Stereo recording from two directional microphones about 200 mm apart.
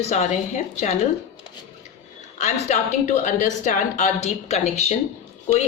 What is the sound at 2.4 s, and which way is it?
A woman's voice, 35° left (ahead or behind).